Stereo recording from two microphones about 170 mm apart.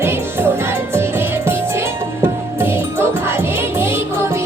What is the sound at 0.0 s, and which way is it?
Music, 15° right (ahead or behind).